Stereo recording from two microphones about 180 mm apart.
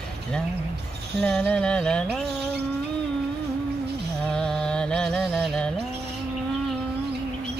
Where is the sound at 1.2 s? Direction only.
5° left (ahead or behind).